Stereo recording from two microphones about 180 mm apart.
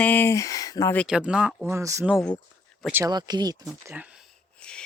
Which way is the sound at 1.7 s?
15° right (ahead or behind).